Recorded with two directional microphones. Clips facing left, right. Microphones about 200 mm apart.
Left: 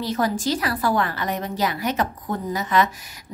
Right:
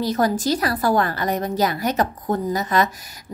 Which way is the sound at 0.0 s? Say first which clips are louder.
Right 3 dB; 40° right (ahead or behind).